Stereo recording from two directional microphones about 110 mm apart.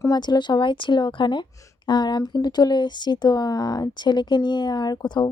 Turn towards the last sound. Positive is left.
turn(degrees=40)  # may be behind; listen again after turning